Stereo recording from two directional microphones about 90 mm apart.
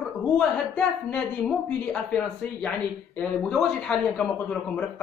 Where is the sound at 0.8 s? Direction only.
10° left (ahead or behind).